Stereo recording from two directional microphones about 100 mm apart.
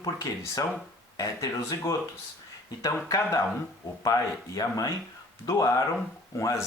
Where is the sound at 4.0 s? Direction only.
35° left (ahead or behind).